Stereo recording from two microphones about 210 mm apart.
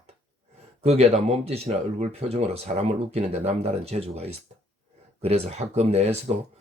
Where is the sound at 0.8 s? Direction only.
30° right (ahead or behind).